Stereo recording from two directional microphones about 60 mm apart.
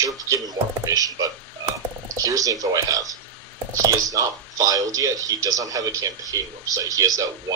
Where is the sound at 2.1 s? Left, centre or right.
Right.